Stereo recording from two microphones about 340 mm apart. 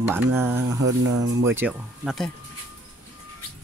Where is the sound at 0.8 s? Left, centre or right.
Right.